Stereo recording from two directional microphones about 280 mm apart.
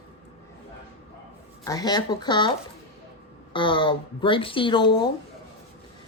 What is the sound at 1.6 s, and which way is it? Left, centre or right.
A woman's voice, centre.